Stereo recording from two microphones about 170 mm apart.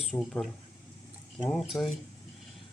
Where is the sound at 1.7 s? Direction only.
15° left (ahead or behind).